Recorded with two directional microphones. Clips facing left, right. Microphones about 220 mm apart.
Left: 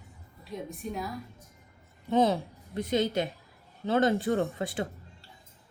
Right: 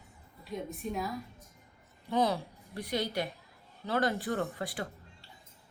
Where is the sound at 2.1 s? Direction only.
25° left (ahead or behind).